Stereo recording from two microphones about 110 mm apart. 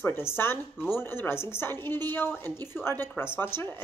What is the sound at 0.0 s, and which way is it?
Speech, 20° left (ahead or behind).